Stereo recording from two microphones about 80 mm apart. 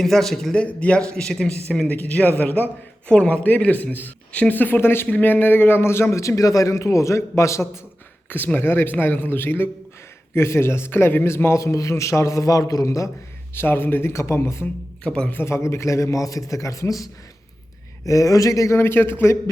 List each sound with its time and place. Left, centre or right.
0.0 s a man's voice: centre; by 7.7 s left
8.3 s a man's voice: left
13.5 s a man's voice: left
15.0 s a man's voice: centre
15.3 s a man's voice: left
18.0 s a man's voice: left